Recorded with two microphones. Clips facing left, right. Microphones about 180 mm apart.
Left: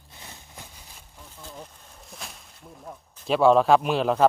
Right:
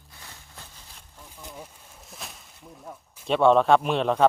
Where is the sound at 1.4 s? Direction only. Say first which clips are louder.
Even; 15° right (ahead or behind).